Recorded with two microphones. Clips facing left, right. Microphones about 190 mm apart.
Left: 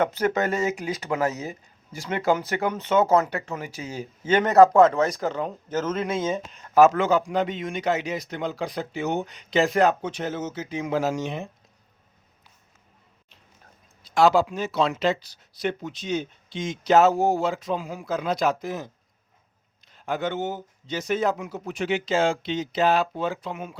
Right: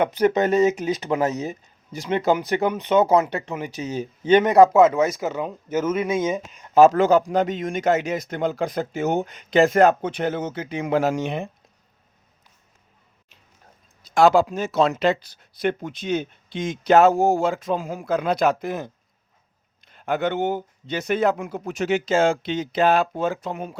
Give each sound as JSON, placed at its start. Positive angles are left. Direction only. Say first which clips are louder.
{"t": 0.0, "sound": "speech", "louder": "right 4 dB", "side_deg": -15}
{"t": 6.7, "sound": "a man's voice", "louder": "right 3 dB", "side_deg": -35}
{"t": 14.0, "sound": "speech", "louder": "right 3 dB", "side_deg": -50}
{"t": 19.9, "sound": "speech", "louder": "right 4 dB", "side_deg": -60}